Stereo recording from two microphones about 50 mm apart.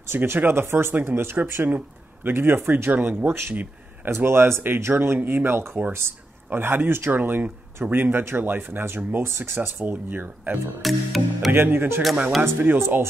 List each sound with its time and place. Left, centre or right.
0.0 s speech: right
3.3 s speech: right
10.8 s speech: centre
11.5 s speech: right